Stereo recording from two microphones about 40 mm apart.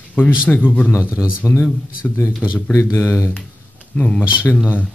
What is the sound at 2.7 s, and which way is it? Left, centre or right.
Speech, left.